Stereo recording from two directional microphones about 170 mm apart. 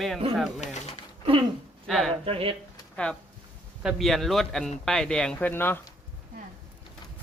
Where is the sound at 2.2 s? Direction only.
35° right (ahead or behind).